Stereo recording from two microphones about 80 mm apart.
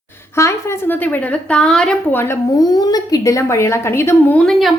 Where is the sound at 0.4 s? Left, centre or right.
Left.